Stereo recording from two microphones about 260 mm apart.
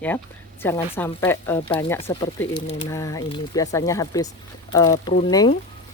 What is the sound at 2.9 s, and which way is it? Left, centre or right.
A woman's voice, centre.